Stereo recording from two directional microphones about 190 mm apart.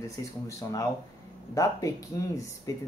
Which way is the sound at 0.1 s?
15° left (ahead or behind).